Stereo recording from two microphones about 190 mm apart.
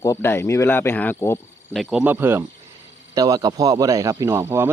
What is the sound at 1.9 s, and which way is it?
A man's voice, 10° right (ahead or behind).